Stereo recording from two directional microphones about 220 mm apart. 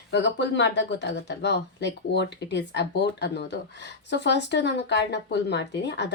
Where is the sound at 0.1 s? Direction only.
55° left (ahead or behind).